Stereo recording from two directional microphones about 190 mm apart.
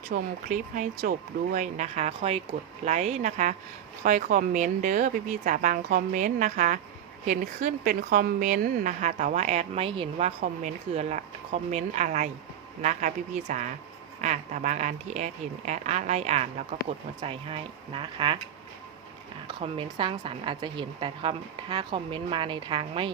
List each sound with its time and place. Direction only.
0.1 s a woman's voice: 45° right (ahead or behind); by 18.3 s 25° right (ahead or behind)
19.5 s a woman's voice: 25° right (ahead or behind)